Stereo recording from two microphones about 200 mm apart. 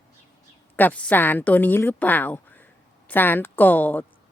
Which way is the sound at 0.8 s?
5° left (ahead or behind).